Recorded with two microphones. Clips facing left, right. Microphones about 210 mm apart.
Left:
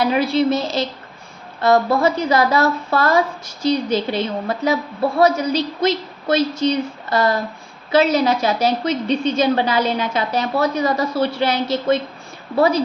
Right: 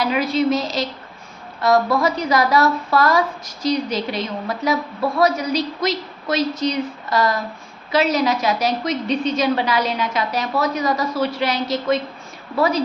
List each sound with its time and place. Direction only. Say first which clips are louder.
0.1 s a woman's voice: left 2 dB; 30° left (ahead or behind)